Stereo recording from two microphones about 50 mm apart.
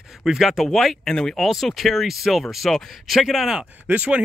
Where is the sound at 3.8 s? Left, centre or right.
Right.